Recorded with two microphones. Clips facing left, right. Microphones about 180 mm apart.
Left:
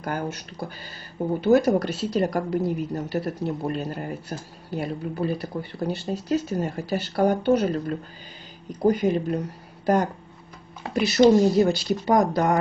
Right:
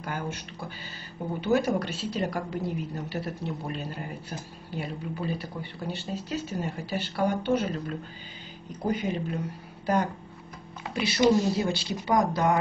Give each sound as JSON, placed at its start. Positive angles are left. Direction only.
{"t": 0.0, "sound": "speech", "side_deg": 40}
{"t": 10.9, "sound": "speech", "side_deg": 45}